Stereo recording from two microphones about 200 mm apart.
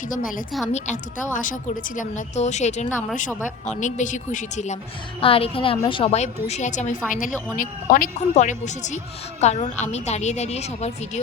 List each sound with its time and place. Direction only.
0.1 s a woman's voice: 45° left (ahead or behind)